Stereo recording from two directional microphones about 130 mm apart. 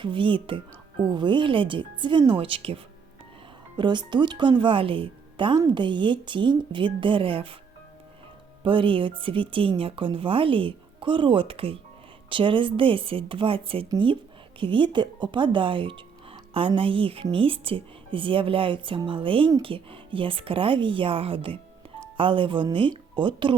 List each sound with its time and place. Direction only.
0.0 s a woman's voice: 40° right (ahead or behind)
8.6 s a woman's voice: 40° right (ahead or behind)